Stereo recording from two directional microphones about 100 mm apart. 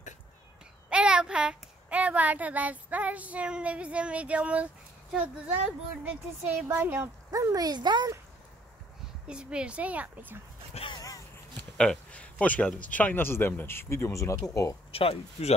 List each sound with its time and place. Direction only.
0.8 s a child's voice: 10° right (ahead or behind)
7.2 s speech: 35° right (ahead or behind)
9.3 s a child's voice: 10° right (ahead or behind)
10.9 s a sound: 40° left (ahead or behind)
11.7 s speech: 10° left (ahead or behind); by 14.7 s 30° left (ahead or behind)
14.9 s speech: 70° left (ahead or behind)